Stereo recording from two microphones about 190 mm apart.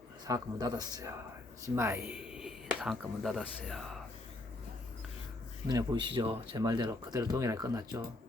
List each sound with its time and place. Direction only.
0.3 s speech: 20° right (ahead or behind); by 3.9 s centre (ahead or behind)
5.6 s speech: 20° right (ahead or behind)